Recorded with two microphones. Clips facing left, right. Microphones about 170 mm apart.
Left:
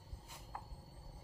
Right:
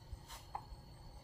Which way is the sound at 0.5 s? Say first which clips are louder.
Right 2 dB; 20° right (ahead or behind).